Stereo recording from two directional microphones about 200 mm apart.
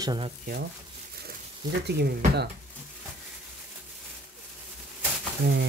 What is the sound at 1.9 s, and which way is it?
Speech, 55° right (ahead or behind).